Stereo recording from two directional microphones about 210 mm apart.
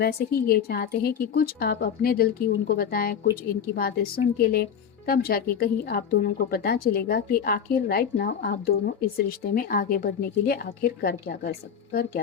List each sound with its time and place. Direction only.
0.0 s speech: 45° left (ahead or behind)